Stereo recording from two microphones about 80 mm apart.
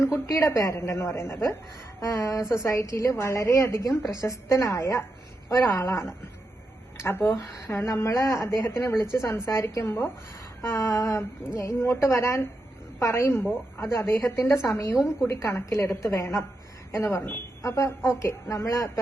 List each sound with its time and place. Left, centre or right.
0.0 s a woman's voice: left
7.3 s a woman's voice: left